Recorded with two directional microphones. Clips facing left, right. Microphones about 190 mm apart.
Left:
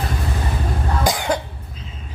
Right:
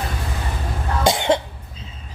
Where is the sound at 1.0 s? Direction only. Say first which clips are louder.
Right 4 dB; 25° right (ahead or behind).